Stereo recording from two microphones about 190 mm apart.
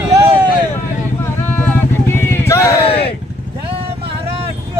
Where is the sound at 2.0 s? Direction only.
10° left (ahead or behind).